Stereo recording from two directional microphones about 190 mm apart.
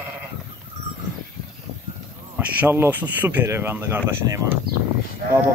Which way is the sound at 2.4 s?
10° right (ahead or behind).